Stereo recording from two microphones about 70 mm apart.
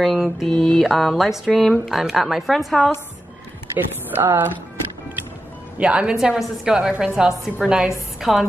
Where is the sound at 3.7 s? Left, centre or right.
Right.